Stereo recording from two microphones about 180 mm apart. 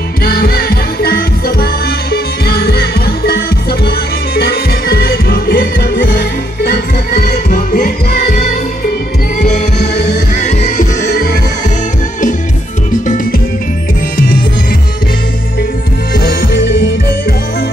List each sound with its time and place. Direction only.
0.2 s music: 55° left (ahead or behind)
10.3 s music: 40° left (ahead or behind)
13.0 s music: 45° left (ahead or behind)
16.2 s music: 55° left (ahead or behind)